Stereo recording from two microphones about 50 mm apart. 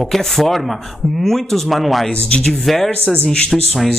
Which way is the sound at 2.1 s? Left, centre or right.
Left.